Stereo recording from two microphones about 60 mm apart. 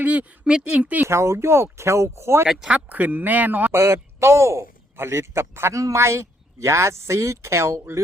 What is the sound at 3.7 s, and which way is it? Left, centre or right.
A man's voice, right.